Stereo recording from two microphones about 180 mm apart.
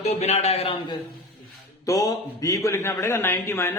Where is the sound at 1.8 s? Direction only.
20° left (ahead or behind).